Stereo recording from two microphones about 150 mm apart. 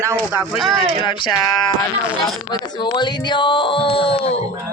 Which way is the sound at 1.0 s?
35° left (ahead or behind).